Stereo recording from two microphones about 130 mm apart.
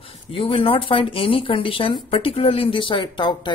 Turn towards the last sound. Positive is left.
turn(degrees=35)  # may be behind; listen again after turning